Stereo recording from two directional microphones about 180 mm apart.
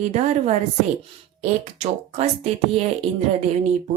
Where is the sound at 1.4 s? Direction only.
40° right (ahead or behind).